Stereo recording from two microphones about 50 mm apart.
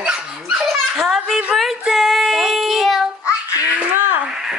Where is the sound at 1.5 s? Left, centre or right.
Centre.